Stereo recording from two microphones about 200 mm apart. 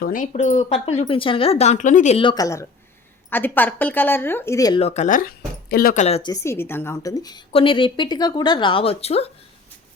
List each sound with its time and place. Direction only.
0.0 s speech: 40° left (ahead or behind)
2.1 s a woman's voice: 20° left (ahead or behind)
4.8 s speech: 35° left (ahead or behind)
6.3 s a woman's voice: 15° left (ahead or behind); by 9.3 s 30° left (ahead or behind)